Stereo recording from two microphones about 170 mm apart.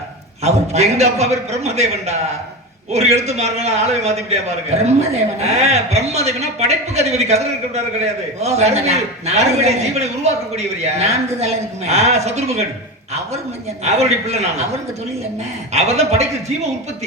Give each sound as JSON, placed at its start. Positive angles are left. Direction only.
{"t": 0.4, "sound": "a man's voice", "side_deg": -40}
{"t": 13.8, "sound": "a man's voice", "side_deg": -40}
{"t": 15.7, "sound": "a man's voice", "side_deg": -40}